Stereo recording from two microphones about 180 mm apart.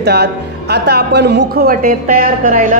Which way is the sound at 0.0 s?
65° right (ahead or behind).